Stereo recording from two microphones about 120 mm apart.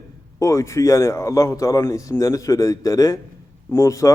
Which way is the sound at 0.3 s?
25° left (ahead or behind).